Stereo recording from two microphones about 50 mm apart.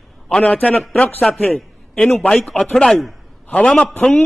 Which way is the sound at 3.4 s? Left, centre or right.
Left.